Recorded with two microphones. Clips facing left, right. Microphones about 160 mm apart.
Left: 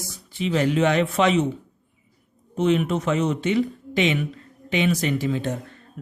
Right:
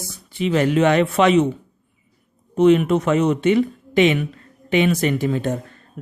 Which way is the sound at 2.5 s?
60° right (ahead or behind).